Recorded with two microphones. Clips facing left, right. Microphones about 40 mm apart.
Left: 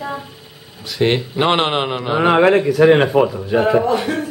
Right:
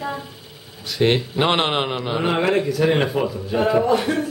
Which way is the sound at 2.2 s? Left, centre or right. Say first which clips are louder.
Left 8 dB; left.